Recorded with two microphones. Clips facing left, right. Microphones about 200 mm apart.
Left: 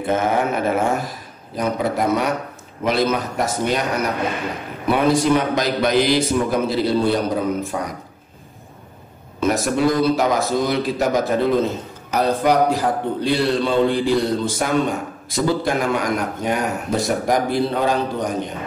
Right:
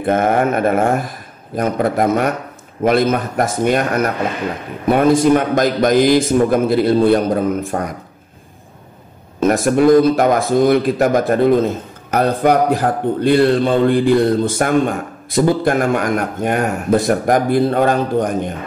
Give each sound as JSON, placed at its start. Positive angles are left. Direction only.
{"t": 0.0, "sound": "a sound", "side_deg": -55}
{"t": 1.6, "sound": "a man's voice", "side_deg": -50}
{"t": 9.4, "sound": "a man's voice", "side_deg": -50}